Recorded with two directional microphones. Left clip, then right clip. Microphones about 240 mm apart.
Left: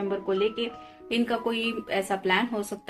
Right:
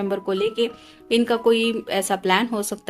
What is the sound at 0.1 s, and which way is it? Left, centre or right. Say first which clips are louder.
Speech: right 2 dB; right.